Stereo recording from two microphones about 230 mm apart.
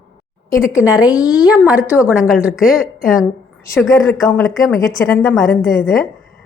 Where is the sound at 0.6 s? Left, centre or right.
Centre.